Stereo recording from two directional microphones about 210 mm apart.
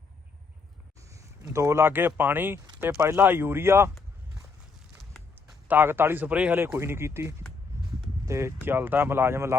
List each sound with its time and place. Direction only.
1.1 s speech: 15° right (ahead or behind)
2.6 s a sound: 20° right (ahead or behind)
3.0 s speech: 10° right (ahead or behind)
5.3 s a man's voice: 10° right (ahead or behind)